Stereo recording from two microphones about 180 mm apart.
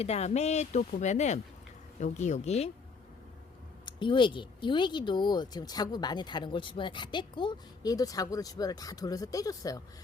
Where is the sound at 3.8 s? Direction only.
25° left (ahead or behind).